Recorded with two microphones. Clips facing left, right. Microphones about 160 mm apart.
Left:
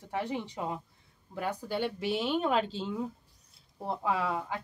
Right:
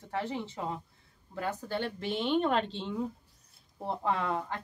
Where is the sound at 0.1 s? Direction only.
15° left (ahead or behind).